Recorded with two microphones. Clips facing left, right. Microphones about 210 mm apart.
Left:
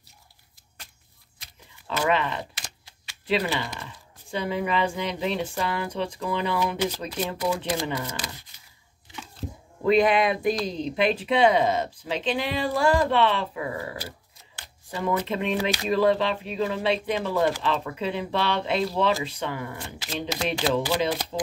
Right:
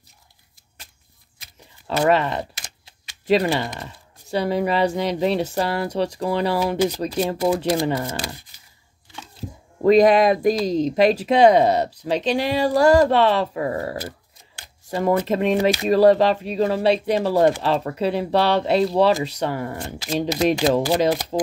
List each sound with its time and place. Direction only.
1.9 s speech: 40° right (ahead or behind)
9.8 s speech: 40° right (ahead or behind)